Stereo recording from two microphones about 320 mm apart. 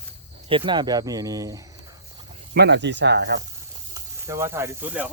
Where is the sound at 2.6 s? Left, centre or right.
Right.